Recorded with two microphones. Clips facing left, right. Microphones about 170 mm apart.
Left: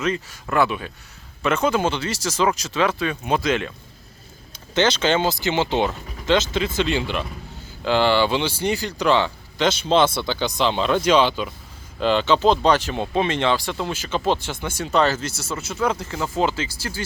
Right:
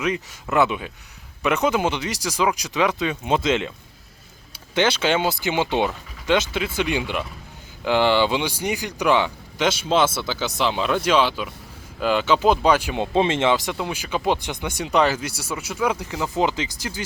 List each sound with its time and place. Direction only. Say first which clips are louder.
0.0 s speech: even; 15° right (ahead or behind)
4.5 s speech: left 1 dB; 10° right (ahead or behind)
13.1 s speech: right 2 dB; 25° right (ahead or behind)